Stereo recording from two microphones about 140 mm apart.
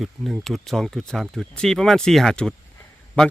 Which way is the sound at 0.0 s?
Centre (ahead or behind).